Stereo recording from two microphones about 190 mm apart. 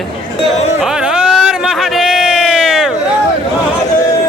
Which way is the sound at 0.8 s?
5° right (ahead or behind).